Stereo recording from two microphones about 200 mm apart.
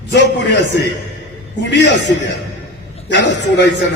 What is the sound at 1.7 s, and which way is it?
A man's voice, 60° left (ahead or behind).